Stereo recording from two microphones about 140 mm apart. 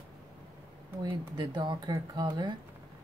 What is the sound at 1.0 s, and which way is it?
Speech, 35° right (ahead or behind).